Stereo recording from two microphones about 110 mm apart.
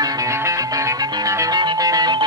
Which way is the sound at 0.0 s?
30° right (ahead or behind).